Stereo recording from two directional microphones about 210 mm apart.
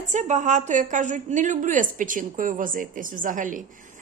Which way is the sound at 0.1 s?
35° right (ahead or behind).